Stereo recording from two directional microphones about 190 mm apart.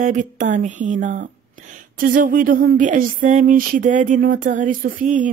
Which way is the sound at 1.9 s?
45° right (ahead or behind).